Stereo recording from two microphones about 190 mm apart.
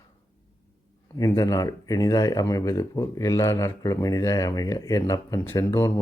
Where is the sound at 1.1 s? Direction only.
20° left (ahead or behind).